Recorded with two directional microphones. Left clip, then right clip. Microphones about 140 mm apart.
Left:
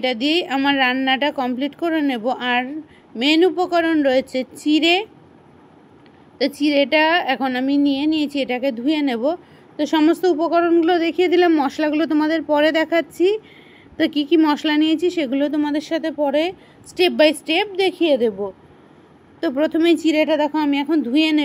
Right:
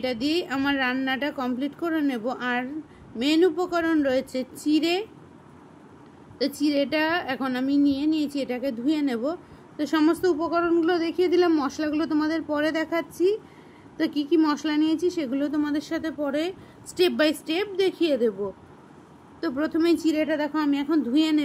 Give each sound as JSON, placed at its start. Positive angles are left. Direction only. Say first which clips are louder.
{"t": 0.0, "sound": "a woman's voice", "louder": "left 7 dB", "side_deg": 25}
{"t": 6.3, "sound": "a woman's voice", "louder": "left 7 dB", "side_deg": 20}
{"t": 19.4, "sound": "a woman's voice", "louder": "left 7 dB", "side_deg": 25}